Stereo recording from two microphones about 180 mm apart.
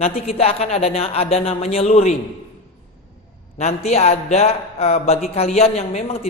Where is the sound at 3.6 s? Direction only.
35° left (ahead or behind).